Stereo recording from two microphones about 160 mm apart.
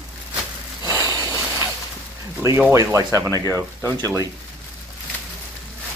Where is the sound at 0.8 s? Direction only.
20° right (ahead or behind).